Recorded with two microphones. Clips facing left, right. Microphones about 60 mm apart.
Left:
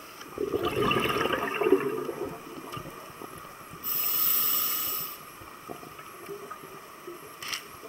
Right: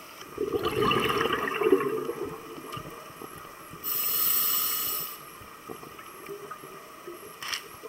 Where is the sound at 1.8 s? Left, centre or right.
Centre.